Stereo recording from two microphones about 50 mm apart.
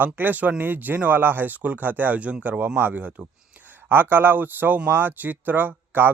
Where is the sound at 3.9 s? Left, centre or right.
Right.